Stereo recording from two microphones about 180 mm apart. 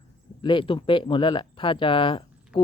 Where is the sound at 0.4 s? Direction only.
30° left (ahead or behind).